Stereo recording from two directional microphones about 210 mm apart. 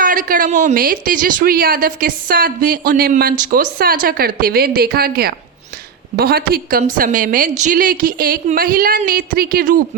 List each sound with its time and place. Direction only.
0.0 s speech: 40° right (ahead or behind)